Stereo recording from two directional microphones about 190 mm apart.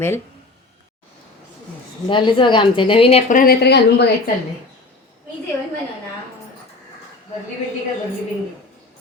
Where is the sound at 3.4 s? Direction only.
55° left (ahead or behind).